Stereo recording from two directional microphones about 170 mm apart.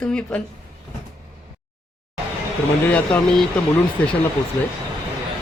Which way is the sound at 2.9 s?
10° left (ahead or behind).